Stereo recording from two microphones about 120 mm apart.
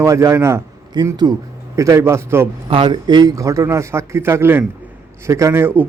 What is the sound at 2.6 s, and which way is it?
Speech, 45° right (ahead or behind).